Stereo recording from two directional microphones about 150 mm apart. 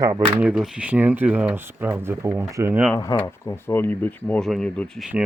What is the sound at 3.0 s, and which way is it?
Speech, 20° left (ahead or behind).